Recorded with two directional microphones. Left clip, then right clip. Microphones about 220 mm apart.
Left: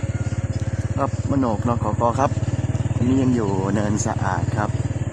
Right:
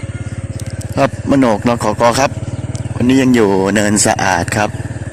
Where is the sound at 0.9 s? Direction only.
35° right (ahead or behind).